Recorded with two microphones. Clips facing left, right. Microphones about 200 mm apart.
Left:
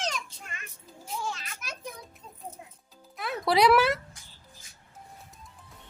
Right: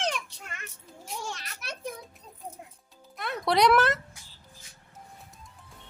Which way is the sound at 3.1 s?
Centre (ahead or behind).